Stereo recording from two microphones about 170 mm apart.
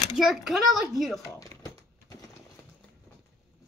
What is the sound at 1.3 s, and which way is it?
Typing, 20° left (ahead or behind).